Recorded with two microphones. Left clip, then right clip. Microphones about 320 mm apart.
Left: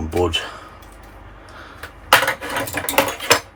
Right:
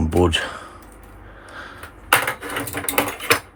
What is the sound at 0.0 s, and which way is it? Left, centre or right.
Speech, right.